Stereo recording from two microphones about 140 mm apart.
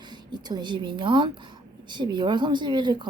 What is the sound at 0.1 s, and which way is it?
A woman's voice, 30° right (ahead or behind).